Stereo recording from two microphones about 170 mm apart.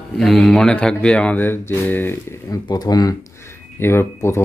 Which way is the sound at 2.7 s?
25° left (ahead or behind).